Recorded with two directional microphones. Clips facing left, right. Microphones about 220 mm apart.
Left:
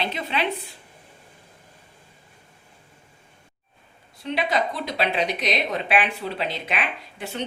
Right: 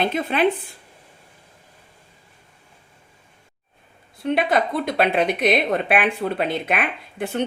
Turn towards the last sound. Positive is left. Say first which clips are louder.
# right 7 dB
turn(degrees=-55)  # may be behind; listen again after turning